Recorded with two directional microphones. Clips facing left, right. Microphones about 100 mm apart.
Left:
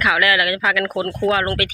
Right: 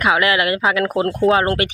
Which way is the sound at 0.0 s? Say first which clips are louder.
Right 1 dB; 25° right (ahead or behind).